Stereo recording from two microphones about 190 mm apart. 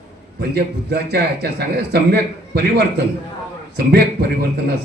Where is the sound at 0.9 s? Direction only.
55° right (ahead or behind).